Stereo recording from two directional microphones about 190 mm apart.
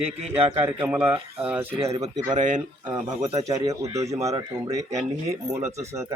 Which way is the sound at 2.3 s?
40° right (ahead or behind).